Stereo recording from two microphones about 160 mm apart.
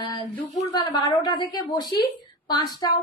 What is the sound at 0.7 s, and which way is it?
A child's voice, 25° left (ahead or behind).